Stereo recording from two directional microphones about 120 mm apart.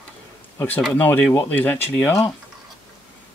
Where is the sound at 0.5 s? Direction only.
15° left (ahead or behind).